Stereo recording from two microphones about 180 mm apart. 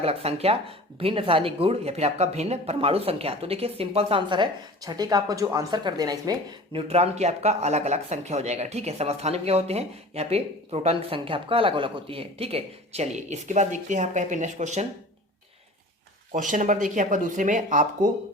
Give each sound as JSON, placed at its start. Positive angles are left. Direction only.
{"t": 0.0, "sound": "speech", "side_deg": -35}
{"t": 6.7, "sound": "speech", "side_deg": -35}
{"t": 16.3, "sound": "speech", "side_deg": -45}